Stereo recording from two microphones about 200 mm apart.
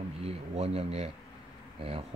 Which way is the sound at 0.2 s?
30° right (ahead or behind).